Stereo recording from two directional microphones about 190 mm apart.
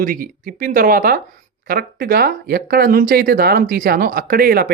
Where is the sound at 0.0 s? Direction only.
45° right (ahead or behind).